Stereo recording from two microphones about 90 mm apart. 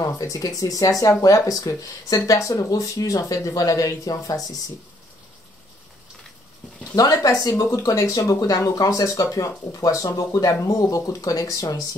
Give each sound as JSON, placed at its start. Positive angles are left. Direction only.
{"t": 0.0, "sound": "speech", "side_deg": 40}
{"t": 7.0, "sound": "speech", "side_deg": 40}